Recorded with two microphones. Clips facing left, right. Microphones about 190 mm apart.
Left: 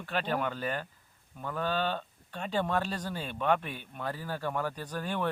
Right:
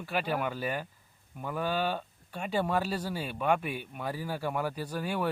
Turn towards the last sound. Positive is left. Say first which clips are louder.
# right 1 dB
turn(degrees=-10)  # may be behind; listen again after turning